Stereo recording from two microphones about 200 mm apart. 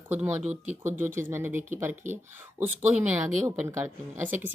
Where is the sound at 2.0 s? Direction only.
35° right (ahead or behind).